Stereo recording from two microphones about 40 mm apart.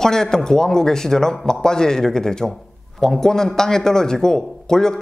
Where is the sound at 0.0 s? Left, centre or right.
Centre.